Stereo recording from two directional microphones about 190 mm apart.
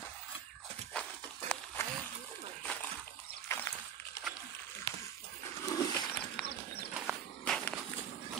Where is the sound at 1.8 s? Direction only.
15° left (ahead or behind).